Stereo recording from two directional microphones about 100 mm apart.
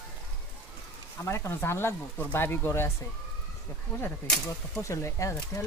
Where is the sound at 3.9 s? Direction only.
10° left (ahead or behind).